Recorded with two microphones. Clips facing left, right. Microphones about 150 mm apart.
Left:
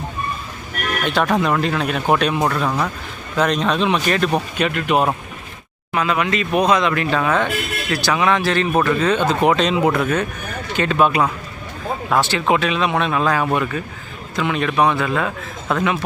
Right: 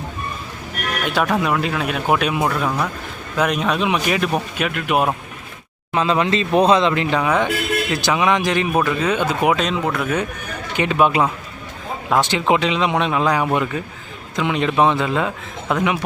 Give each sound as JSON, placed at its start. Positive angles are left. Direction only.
{"t": 1.0, "sound": "speech", "side_deg": -5}
{"t": 5.9, "sound": "speech", "side_deg": -25}
{"t": 10.8, "sound": "speech", "side_deg": -15}